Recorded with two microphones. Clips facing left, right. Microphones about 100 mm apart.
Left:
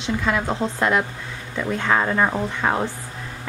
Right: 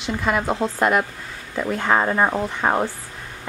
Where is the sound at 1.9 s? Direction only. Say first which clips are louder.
Right 1 dB; 15° right (ahead or behind).